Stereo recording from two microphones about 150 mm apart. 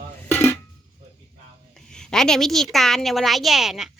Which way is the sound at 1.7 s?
5° left (ahead or behind).